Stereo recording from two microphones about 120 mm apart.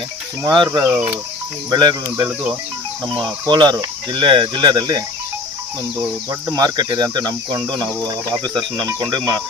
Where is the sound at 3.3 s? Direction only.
40° right (ahead or behind).